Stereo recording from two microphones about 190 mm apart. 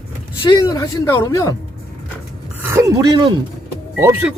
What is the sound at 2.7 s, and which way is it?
Speech, 15° right (ahead or behind).